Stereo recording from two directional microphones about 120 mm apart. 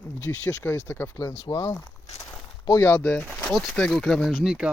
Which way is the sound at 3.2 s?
5° left (ahead or behind).